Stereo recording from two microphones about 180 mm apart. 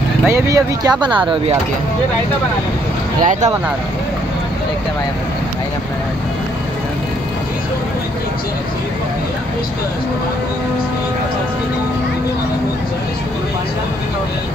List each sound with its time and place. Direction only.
0.3 s speech: 20° right (ahead or behind)
3.2 s speech: 45° right (ahead or behind)